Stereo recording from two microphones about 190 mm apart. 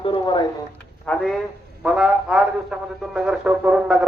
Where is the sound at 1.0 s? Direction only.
5° left (ahead or behind).